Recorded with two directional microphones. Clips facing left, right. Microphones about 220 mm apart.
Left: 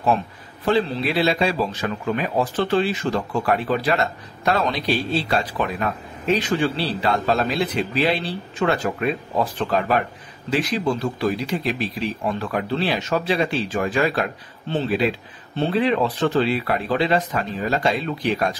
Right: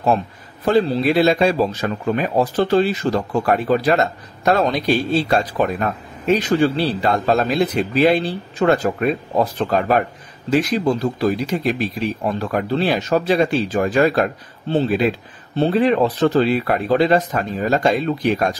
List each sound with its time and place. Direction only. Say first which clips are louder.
0.7 s a man's voice: right 5 dB; 40° right (ahead or behind)
15.5 s a man's voice: right 4 dB; 40° right (ahead or behind)